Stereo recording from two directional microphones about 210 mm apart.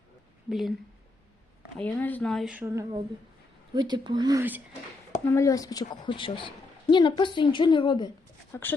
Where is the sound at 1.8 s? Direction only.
5° left (ahead or behind); by 4.6 s 10° right (ahead or behind).